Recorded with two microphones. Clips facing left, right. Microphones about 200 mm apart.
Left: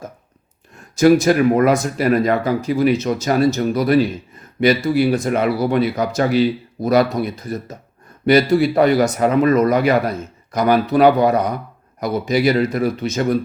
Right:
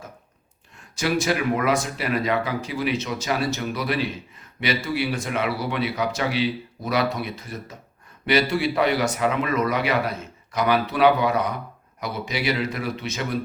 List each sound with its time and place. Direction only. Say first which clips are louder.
0.9 s a man's voice: left 11 dB; 45° left (ahead or behind)